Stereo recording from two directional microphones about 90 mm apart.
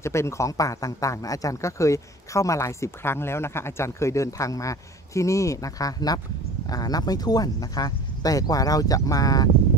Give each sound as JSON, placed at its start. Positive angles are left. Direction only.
{"t": 0.0, "sound": "speech", "side_deg": 30}